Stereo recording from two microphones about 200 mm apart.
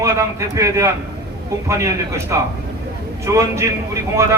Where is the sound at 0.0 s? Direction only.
15° right (ahead or behind).